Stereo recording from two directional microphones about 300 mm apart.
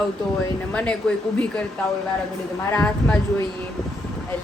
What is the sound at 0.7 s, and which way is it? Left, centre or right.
Speech, centre.